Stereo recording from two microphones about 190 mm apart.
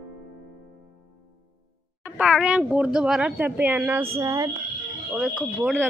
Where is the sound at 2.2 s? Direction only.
5° right (ahead or behind).